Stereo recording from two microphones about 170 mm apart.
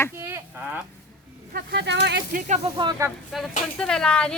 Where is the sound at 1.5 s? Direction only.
90° right.